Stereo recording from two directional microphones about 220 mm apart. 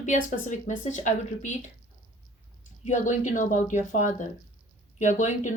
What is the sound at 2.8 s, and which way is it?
Speech, 35° left (ahead or behind).